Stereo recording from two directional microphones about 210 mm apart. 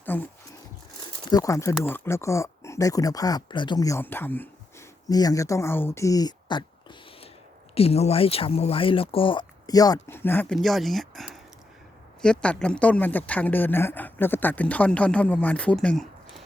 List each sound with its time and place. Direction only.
0.0 s a sound: 10° left (ahead or behind)
1.3 s speech: 15° left (ahead or behind)
7.8 s speech: 30° left (ahead or behind); by 16.4 s 5° left (ahead or behind)